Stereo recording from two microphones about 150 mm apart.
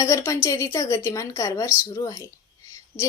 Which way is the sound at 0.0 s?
20° left (ahead or behind).